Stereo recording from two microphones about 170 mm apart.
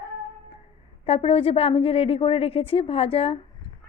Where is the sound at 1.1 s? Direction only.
35° left (ahead or behind).